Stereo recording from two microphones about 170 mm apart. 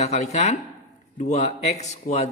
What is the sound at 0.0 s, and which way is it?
Speech, 40° left (ahead or behind).